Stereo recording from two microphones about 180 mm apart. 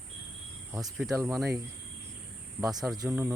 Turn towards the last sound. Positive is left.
turn(degrees=-15)  # may be behind; listen again after turning